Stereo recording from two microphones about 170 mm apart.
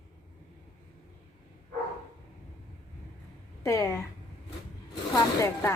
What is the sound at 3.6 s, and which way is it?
Speech, 15° left (ahead or behind).